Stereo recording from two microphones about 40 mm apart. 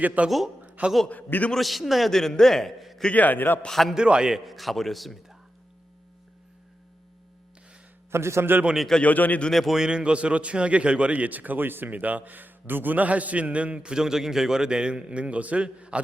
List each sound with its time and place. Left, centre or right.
0.0 s a man's voice: right
0.3 s a man's voice: centre
0.8 s a man's voice: right
1.1 s a man's voice: left
1.5 s a man's voice: centre
3.1 s a man's voice: left
3.7 s a man's voice: centre
3.9 s a man's voice: right
4.3 s a man's voice: centre
8.1 s a man's voice: right
9.0 s a man's voice: left
9.6 s a man's voice: centre
11.1 s speech: right
11.9 s a man's voice: right